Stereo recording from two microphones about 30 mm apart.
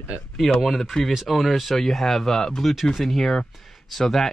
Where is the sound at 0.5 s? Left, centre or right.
Centre.